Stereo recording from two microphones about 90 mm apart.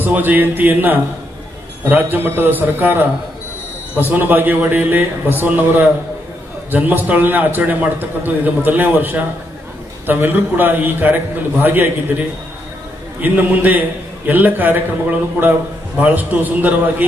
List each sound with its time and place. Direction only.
0.0 s a man's voice: 20° right (ahead or behind)
13.2 s a man's voice: 20° right (ahead or behind)